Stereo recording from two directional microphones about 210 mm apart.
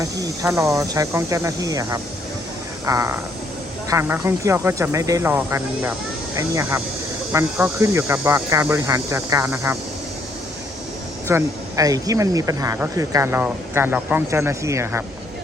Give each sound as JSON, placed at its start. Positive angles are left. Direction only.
{"t": 0.0, "sound": "speech", "side_deg": -15}
{"t": 11.3, "sound": "speech", "side_deg": -15}